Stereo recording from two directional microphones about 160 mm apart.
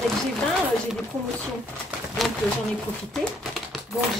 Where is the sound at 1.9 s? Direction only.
Centre (ahead or behind).